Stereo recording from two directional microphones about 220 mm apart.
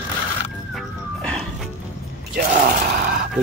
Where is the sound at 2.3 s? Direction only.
40° right (ahead or behind).